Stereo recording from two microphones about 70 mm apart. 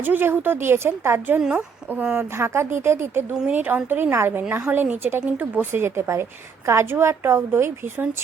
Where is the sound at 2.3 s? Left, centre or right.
Right.